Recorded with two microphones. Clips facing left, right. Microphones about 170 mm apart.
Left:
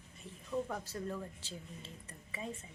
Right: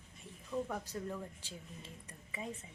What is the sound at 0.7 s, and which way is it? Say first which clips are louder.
A woman's voice: even; 10° right (ahead or behind).